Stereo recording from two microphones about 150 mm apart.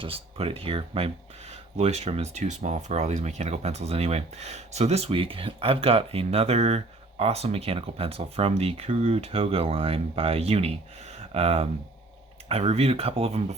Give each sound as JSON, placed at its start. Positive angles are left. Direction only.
{"t": 0.0, "sound": "speech", "side_deg": -40}